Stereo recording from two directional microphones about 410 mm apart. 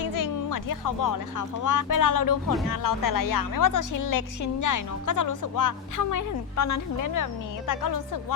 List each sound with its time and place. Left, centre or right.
0.0 s speech: left